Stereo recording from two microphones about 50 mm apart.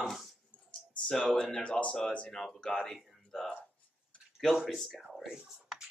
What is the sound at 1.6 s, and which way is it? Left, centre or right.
Speech, left.